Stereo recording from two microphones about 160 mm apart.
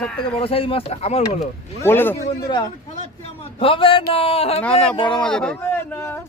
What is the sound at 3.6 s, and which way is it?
Speech, 35° left (ahead or behind).